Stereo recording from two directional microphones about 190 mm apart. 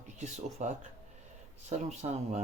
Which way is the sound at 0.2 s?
40° right (ahead or behind).